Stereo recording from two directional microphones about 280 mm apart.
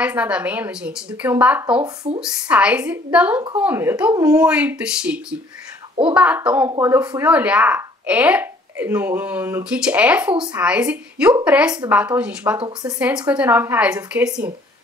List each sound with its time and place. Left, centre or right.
0.0 s speech: centre
12.5 s speech: centre